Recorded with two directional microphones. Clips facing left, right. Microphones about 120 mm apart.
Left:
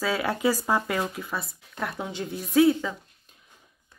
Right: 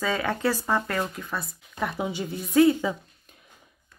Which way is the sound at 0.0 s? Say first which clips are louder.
Left 1 dB; 5° left (ahead or behind).